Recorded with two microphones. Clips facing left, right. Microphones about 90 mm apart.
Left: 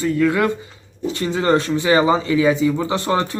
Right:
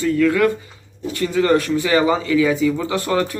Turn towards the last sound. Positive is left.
turn(degrees=25)  # may be behind; listen again after turning